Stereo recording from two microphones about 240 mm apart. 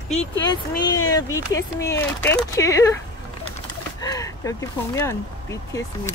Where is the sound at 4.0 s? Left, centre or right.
Centre.